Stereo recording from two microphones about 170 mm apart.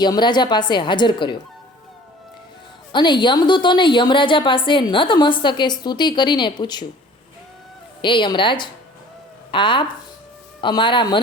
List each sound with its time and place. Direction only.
0.0 s a woman's voice: 25° left (ahead or behind)
2.9 s a woman's voice: 25° left (ahead or behind)
8.0 s a woman's voice: 30° left (ahead or behind)